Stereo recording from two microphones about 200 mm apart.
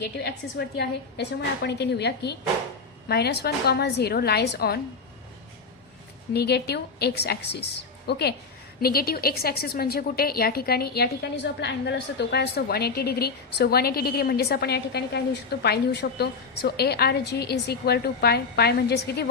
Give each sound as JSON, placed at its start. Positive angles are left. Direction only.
{"t": 0.2, "sound": "a woman's voice", "side_deg": 55}
{"t": 6.3, "sound": "a woman's voice", "side_deg": 55}